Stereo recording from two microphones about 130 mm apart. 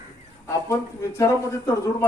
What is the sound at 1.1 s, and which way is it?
Speech, 25° left (ahead or behind).